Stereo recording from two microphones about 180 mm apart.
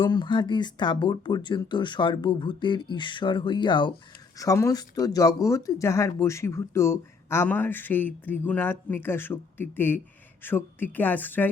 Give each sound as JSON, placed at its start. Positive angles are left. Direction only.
{"t": 0.0, "sound": "speech", "side_deg": 25}